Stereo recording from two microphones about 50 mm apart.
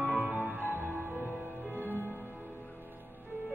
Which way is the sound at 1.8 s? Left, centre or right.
Right.